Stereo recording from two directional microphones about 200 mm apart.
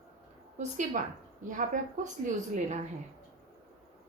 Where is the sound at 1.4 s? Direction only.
40° right (ahead or behind).